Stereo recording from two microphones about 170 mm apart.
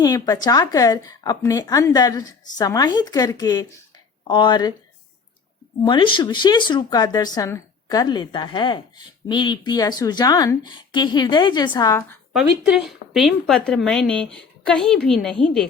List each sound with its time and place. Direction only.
0.0 s a woman's voice: 20° left (ahead or behind)
5.8 s a woman's voice: 30° left (ahead or behind)
12.3 s speech: 5° right (ahead or behind)